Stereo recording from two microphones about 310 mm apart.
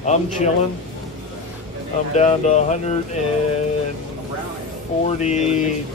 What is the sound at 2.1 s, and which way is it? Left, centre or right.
Speech, left.